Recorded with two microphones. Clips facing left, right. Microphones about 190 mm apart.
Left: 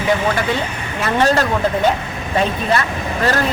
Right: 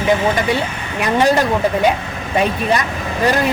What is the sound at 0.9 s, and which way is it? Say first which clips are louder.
Speech: right 2 dB; 15° right (ahead or behind).